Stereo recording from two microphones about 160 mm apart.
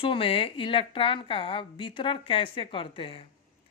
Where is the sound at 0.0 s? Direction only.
35° left (ahead or behind).